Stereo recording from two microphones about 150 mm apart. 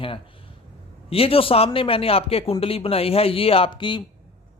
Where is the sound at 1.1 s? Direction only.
40° left (ahead or behind).